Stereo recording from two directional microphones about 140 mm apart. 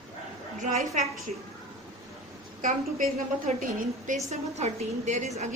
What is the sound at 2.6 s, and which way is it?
A woman's voice, 70° right (ahead or behind).